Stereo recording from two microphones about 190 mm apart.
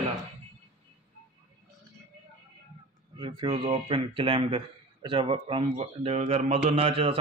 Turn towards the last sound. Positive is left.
turn(degrees=-30)  # may be behind; listen again after turning